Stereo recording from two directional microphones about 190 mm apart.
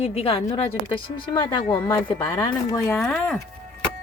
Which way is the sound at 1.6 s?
10° left (ahead or behind).